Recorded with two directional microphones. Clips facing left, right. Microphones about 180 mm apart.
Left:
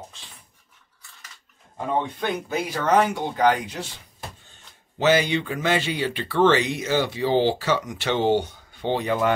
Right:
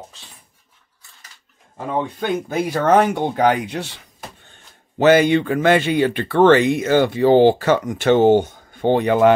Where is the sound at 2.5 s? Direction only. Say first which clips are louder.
Right 6 dB; 50° right (ahead or behind).